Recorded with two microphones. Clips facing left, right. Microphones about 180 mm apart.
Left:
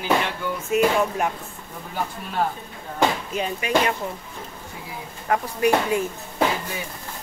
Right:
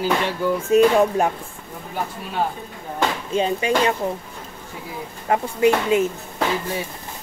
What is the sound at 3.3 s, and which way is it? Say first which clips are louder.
Speech: right 7 dB; 30° right (ahead or behind).